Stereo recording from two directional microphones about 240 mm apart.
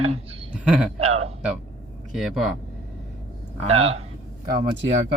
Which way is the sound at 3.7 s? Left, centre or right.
Right.